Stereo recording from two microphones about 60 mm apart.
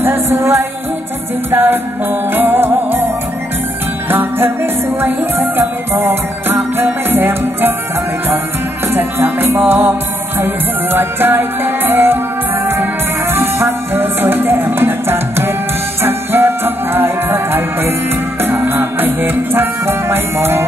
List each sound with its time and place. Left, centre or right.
0.0 s music: right
4.1 s music: right
8.9 s music: right
13.3 s music: right